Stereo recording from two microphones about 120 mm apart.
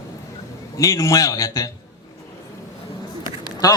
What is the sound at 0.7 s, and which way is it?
Speech, 30° left (ahead or behind).